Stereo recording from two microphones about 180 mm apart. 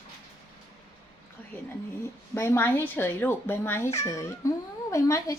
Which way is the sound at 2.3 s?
15° left (ahead or behind).